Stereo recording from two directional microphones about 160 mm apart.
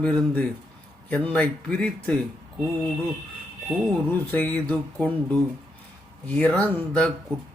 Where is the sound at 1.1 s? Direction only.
10° left (ahead or behind).